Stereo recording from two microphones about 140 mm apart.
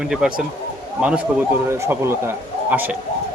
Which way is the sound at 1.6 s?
20° right (ahead or behind).